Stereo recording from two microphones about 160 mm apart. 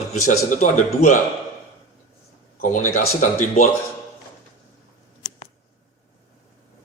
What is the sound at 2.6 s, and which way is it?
Speech, 50° left (ahead or behind).